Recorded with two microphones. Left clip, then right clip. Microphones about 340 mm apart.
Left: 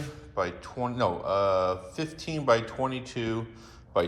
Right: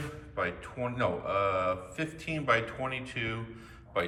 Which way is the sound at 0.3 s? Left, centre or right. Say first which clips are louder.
Left 3 dB; centre.